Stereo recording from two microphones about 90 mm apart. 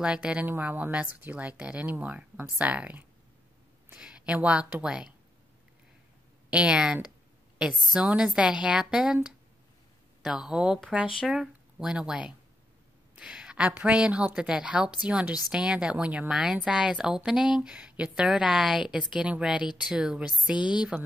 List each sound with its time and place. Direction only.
0.0 s a woman's voice: 10° right (ahead or behind)
2.3 s speech: 25° right (ahead or behind)
2.6 s a woman's voice: 15° right (ahead or behind)
6.5 s a woman's voice: 10° right (ahead or behind)